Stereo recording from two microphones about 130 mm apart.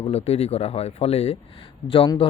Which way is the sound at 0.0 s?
50° left (ahead or behind).